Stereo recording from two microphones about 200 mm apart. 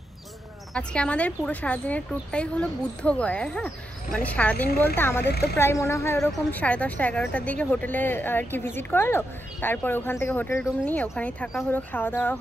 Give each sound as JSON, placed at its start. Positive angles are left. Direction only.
{"t": 0.7, "sound": "a woman's voice", "side_deg": 5}
{"t": 5.3, "sound": "speech", "side_deg": 55}
{"t": 5.6, "sound": "a woman's voice", "side_deg": 15}